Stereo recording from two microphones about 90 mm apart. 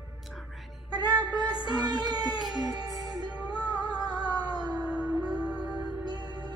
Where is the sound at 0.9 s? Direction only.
50° right (ahead or behind).